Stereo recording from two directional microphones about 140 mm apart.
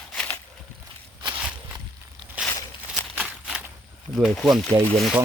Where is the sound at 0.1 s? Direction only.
10° left (ahead or behind).